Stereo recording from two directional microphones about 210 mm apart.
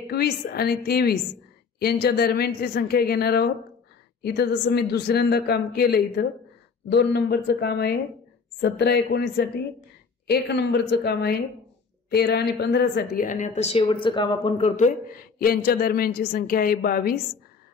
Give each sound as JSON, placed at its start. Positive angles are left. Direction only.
{"t": 0.1, "sound": "a woman's voice", "side_deg": 50}